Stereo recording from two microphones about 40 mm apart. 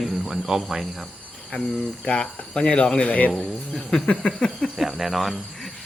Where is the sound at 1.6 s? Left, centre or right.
Centre.